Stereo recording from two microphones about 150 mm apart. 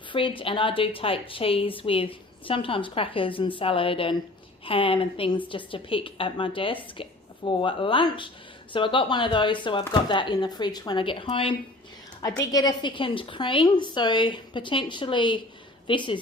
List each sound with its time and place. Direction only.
0.1 s a woman's voice: 35° left (ahead or behind)
12.5 s a woman's voice: 25° left (ahead or behind)